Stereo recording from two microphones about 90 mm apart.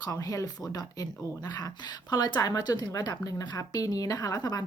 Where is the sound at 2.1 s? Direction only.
50° left (ahead or behind).